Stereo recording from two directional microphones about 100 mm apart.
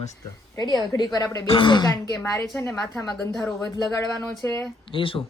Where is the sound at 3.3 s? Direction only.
5° left (ahead or behind).